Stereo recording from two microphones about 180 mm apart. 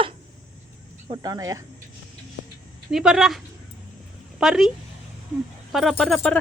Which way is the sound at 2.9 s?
5° right (ahead or behind).